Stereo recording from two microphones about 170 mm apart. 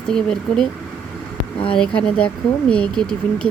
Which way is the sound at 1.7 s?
5° left (ahead or behind).